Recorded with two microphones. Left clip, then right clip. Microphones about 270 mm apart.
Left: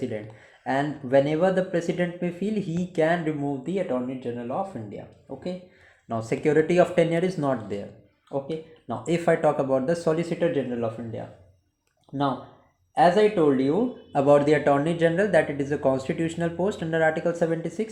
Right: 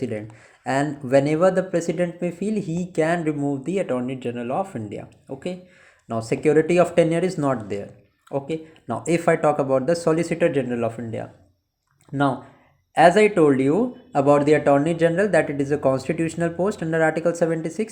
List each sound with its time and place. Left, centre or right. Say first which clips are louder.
0.6 s speech: right 3 dB; right
3.9 s speech: right 3 dB; right
6.1 s speech: right 4 dB; right
8.9 s speech: right 3 dB; right
13.0 s speech: right 4 dB; right
14.1 s speech: right 2 dB; right